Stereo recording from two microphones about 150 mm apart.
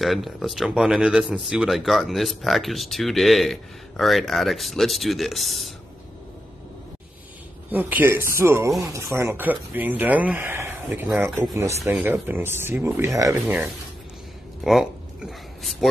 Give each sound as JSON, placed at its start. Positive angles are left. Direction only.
{"t": 0.0, "sound": "speech", "side_deg": 0}
{"t": 7.7, "sound": "speech", "side_deg": -10}
{"t": 14.6, "sound": "a sound", "side_deg": 0}